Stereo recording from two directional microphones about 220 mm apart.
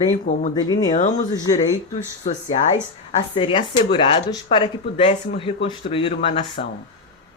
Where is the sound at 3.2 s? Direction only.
25° left (ahead or behind).